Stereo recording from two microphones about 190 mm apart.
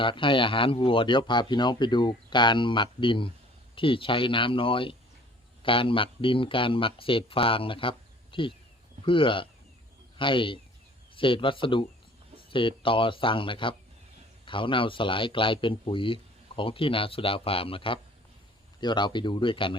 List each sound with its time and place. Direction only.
0.0 s a man's voice: 25° left (ahead or behind)